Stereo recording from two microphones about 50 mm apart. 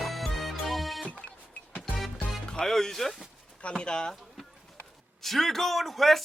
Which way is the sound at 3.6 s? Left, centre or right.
Centre.